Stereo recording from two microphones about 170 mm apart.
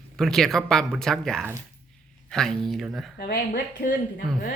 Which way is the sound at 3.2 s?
65° left (ahead or behind).